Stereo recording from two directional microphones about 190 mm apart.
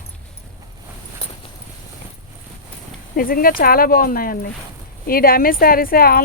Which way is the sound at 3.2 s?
50° left (ahead or behind).